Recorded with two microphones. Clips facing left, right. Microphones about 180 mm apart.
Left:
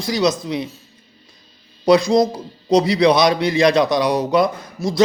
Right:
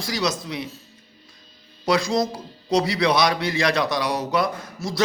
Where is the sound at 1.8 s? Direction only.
20° left (ahead or behind).